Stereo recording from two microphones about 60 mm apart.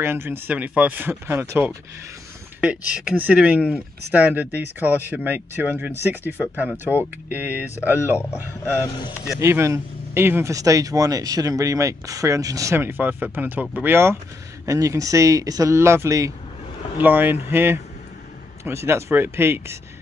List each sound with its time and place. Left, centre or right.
0.0 s speech: right
0.6 s speech: right
1.3 s speech: right
2.6 s speech: right
9.4 s speech: right
10.5 s speech: right
12.7 s speech: right
14.7 s speech: right
15.7 s speech: right
17.0 s speech: right
18.6 s speech: right